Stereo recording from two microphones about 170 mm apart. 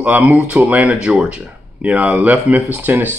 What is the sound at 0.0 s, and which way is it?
A man's voice, 10° right (ahead or behind).